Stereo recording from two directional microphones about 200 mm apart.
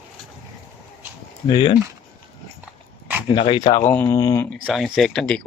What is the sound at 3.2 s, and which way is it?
Speech, 25° left (ahead or behind).